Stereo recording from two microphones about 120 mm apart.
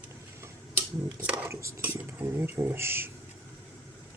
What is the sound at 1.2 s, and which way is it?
Speech, 10° right (ahead or behind).